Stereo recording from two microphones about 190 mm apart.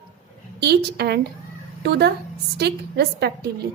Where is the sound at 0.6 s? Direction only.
60° right (ahead or behind).